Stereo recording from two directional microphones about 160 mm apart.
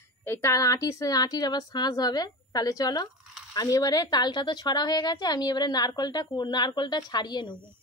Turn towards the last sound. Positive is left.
turn(degrees=25)  # may be behind; listen again after turning